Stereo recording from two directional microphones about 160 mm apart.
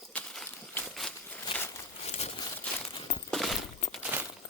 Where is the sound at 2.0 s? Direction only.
45° left (ahead or behind).